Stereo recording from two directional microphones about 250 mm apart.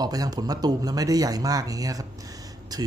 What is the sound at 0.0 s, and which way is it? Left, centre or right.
Speech, centre.